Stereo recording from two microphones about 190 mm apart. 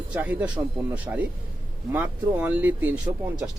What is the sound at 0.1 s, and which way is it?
Speech, 10° right (ahead or behind).